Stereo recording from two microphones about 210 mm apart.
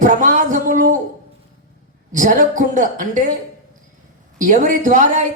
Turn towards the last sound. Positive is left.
turn(degrees=-35)  # may be behind; listen again after turning